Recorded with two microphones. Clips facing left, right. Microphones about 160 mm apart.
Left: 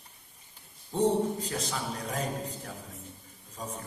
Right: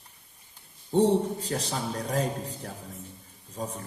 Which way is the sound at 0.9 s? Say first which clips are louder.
Right 4 dB; 30° right (ahead or behind).